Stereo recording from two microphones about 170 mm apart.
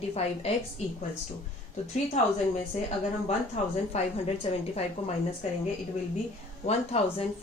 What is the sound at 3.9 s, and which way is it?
Speech, 40° left (ahead or behind).